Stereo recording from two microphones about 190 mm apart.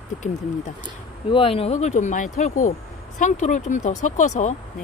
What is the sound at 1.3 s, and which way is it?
Speech, 30° left (ahead or behind).